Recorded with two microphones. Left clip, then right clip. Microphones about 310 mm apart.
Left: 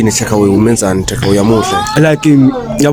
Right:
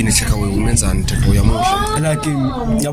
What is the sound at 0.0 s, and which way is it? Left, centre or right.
Speech, left.